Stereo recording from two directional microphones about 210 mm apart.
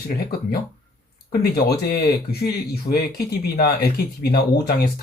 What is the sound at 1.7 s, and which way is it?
Speech, 50° left (ahead or behind).